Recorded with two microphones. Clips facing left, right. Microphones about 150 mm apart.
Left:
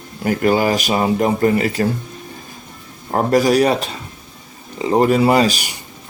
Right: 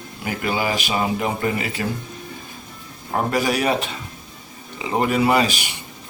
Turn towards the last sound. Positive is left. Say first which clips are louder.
# left 4 dB
turn(degrees=40)  # may be behind; listen again after turning